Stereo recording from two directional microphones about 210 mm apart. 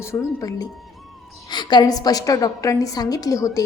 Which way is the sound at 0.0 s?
15° left (ahead or behind).